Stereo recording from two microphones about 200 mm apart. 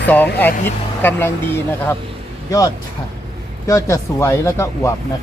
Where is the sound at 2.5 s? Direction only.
15° left (ahead or behind).